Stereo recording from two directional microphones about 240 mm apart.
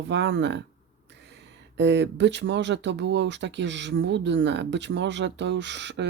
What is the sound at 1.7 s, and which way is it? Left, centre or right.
Speech, right.